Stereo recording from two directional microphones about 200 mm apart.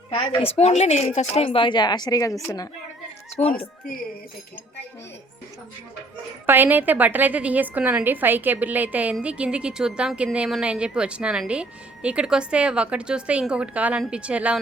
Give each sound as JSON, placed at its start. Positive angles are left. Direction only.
{"t": 0.1, "sound": "speech", "side_deg": 30}
{"t": 6.4, "sound": "a woman's voice", "side_deg": -10}